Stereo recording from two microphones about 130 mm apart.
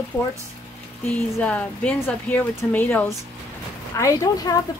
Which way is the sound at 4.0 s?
25° left (ahead or behind).